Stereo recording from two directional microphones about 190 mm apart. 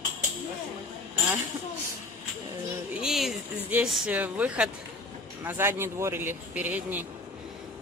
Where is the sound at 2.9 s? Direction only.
Centre (ahead or behind).